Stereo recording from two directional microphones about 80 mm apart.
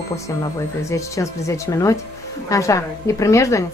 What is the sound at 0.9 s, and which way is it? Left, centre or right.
Speech, left.